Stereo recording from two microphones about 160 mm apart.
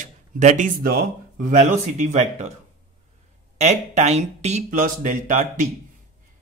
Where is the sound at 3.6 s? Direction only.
45° right (ahead or behind).